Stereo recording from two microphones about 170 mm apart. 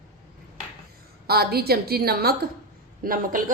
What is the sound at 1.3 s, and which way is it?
A woman's voice, 65° right (ahead or behind).